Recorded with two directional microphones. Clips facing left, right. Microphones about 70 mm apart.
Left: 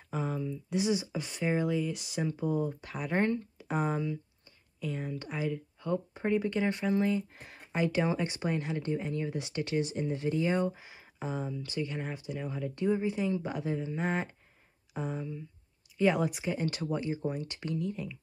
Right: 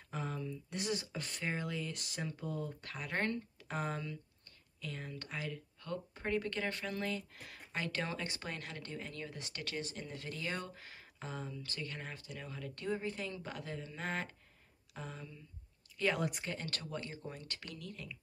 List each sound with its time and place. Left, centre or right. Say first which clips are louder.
0.1 s speech: left 7 dB; centre
7.3 s speech: left 2 dB; left
7.7 s speech: left 10 dB; centre
16.2 s speech: left 7 dB; centre
16.9 s speech: left 11 dB; centre